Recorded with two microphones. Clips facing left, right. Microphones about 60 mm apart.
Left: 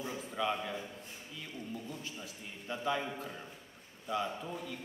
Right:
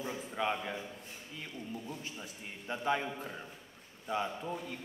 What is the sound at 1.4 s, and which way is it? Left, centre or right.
A man's voice, right.